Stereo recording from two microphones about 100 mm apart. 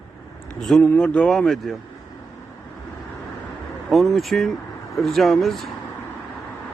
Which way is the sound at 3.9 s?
Centre (ahead or behind).